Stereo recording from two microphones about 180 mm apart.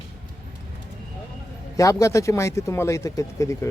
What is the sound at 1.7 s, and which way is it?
Speech, 15° left (ahead or behind).